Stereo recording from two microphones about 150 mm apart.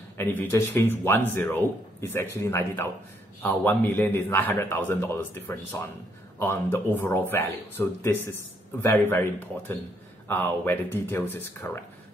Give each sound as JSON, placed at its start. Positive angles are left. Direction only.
{"t": 0.2, "sound": "speech", "side_deg": 15}